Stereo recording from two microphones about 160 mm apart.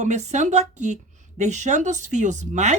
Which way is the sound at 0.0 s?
45° right (ahead or behind).